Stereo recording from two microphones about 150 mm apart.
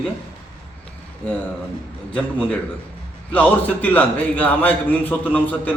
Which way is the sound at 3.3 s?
10° left (ahead or behind).